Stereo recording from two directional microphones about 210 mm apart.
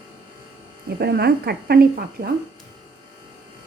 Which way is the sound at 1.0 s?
50° right (ahead or behind).